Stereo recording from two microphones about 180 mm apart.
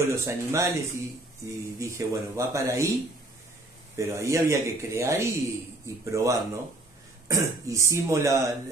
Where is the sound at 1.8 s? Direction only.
15° right (ahead or behind).